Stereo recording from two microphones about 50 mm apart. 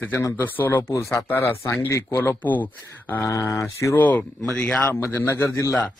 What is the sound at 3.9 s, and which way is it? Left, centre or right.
Speech, left.